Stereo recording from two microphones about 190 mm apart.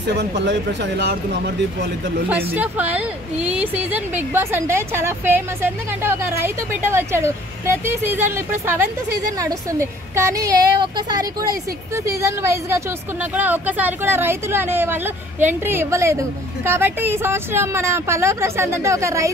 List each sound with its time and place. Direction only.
0.2 s speech: 65° right (ahead or behind)
2.5 s a woman's voice: 10° right (ahead or behind)